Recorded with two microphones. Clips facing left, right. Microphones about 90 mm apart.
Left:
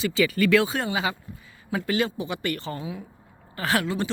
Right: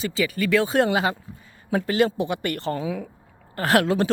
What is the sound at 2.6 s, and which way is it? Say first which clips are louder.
Speech: right 6 dB; 65° right (ahead or behind).